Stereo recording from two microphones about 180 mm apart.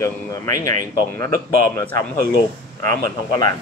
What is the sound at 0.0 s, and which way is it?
A man's voice, 20° left (ahead or behind).